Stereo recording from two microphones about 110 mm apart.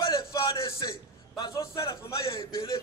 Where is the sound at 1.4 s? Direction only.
30° left (ahead or behind).